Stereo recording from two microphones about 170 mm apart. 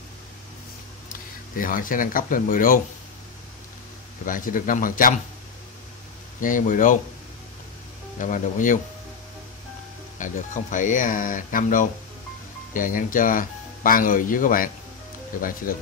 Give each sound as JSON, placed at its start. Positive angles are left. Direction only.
{"t": 1.6, "sound": "speech", "side_deg": 55}
{"t": 4.3, "sound": "speech", "side_deg": 55}
{"t": 6.4, "sound": "speech", "side_deg": 50}
{"t": 8.2, "sound": "speech", "side_deg": 50}
{"t": 10.1, "sound": "speech", "side_deg": 45}